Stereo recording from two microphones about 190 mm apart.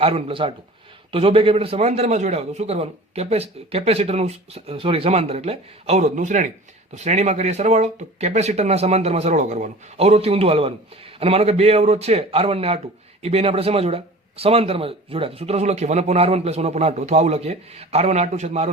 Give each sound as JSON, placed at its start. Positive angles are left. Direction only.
{"t": 0.0, "sound": "speech", "side_deg": -30}